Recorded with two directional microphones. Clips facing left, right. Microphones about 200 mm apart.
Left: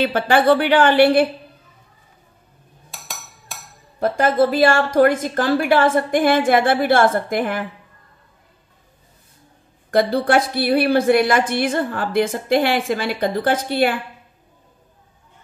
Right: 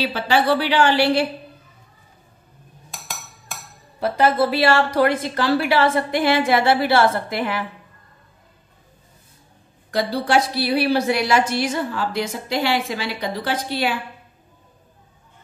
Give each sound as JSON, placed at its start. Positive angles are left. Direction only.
{"t": 0.0, "sound": "a woman's voice", "side_deg": 50}
{"t": 4.0, "sound": "a woman's voice", "side_deg": 45}
{"t": 9.8, "sound": "a woman's voice", "side_deg": 50}